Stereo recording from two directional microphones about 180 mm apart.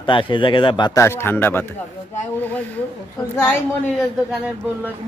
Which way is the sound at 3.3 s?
15° left (ahead or behind).